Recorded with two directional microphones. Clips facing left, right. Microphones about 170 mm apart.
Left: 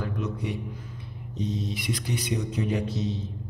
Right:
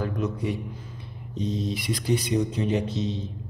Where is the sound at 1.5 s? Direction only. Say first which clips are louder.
Right 4 dB; 30° right (ahead or behind).